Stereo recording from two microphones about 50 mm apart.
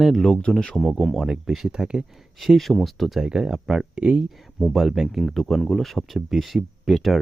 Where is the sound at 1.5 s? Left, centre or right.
Centre.